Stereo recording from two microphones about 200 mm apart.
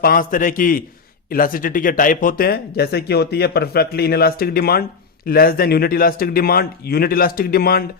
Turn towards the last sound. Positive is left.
turn(degrees=50)  # may be behind; listen again after turning